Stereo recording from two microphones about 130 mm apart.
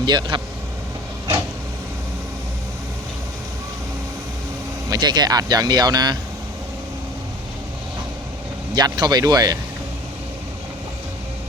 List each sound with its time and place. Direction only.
0.0 s speech: 35° right (ahead or behind)
4.9 s speech: 35° right (ahead or behind)
8.7 s speech: 30° right (ahead or behind)